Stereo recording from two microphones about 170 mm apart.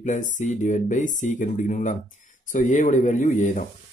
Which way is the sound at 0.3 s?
45° left (ahead or behind).